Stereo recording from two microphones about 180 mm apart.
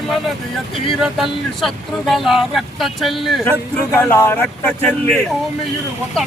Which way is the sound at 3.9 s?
10° left (ahead or behind).